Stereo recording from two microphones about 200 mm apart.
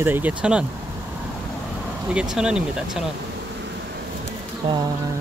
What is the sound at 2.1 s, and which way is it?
Speech, 5° right (ahead or behind).